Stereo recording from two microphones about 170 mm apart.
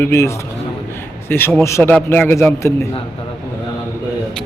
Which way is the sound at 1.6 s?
15° left (ahead or behind).